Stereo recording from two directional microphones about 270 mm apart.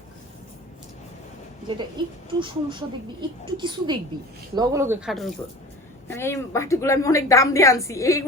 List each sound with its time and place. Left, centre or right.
2.0 s a woman's voice: centre